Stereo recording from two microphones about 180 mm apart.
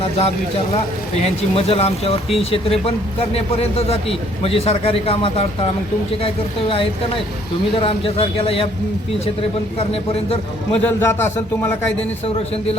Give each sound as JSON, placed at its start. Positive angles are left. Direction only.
{"t": 1.2, "sound": "a man's voice", "side_deg": 30}
{"t": 9.7, "sound": "a man's voice", "side_deg": 35}
{"t": 10.7, "sound": "a man's voice", "side_deg": 10}